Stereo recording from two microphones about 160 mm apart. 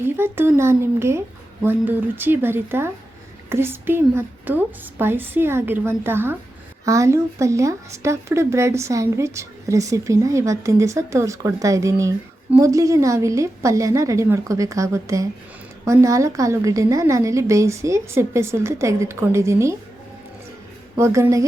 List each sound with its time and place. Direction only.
0.0 s a woman's voice: 15° right (ahead or behind)
20.9 s speech: 20° right (ahead or behind)